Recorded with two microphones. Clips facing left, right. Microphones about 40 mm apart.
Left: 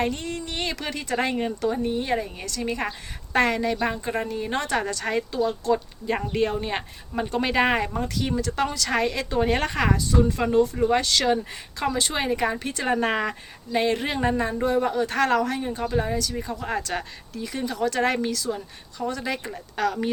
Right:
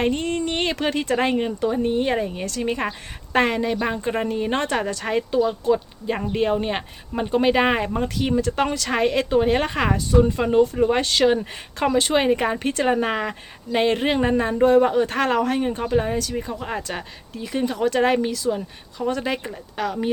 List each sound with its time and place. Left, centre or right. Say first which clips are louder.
0.0 s a sound: right 5 dB; right
1.4 s speech: right 3 dB; centre
1.8 s a woman's voice: right 4 dB; right
2.1 s a woman's voice: right 4 dB; right
7.9 s a woman's voice: right 4 dB; right
9.6 s speech: right 3 dB; centre
9.8 s a woman's voice: right 4 dB; right
13.1 s speech: even; centre
13.7 s a woman's voice: right 4 dB; right
16.9 s speech: left 1 dB; centre
17.3 s a woman's voice: right 5 dB; right
19.7 s speech: even; centre